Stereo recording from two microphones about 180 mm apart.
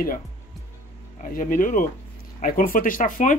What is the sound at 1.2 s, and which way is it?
Speech, 50° left (ahead or behind).